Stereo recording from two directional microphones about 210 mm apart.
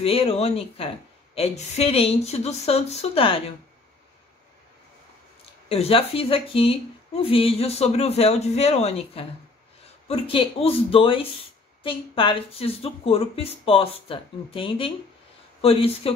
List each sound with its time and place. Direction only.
0.0 s a woman's voice: 25° left (ahead or behind)
5.7 s a woman's voice: 25° left (ahead or behind)